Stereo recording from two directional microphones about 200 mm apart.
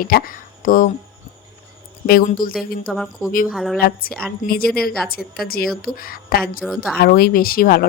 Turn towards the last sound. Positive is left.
turn(degrees=50)  # may be behind; listen again after turning